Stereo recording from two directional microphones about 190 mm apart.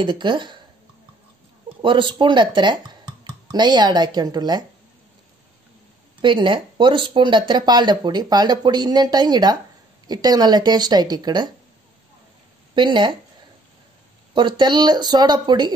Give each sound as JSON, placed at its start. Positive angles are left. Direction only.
{"t": 0.0, "sound": "speech", "side_deg": -25}
{"t": 1.8, "sound": "speech", "side_deg": -25}
{"t": 6.2, "sound": "speech", "side_deg": -25}
{"t": 12.7, "sound": "speech", "side_deg": -25}
{"t": 14.3, "sound": "speech", "side_deg": -25}